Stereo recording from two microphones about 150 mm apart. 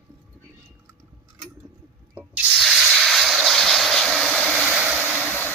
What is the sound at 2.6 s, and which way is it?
Vehicle, centre (ahead or behind).